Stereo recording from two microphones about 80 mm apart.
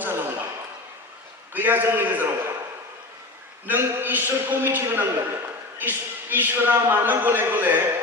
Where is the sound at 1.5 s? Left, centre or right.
Right.